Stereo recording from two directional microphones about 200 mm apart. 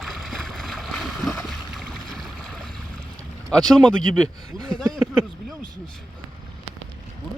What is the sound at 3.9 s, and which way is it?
Speech, 90° right.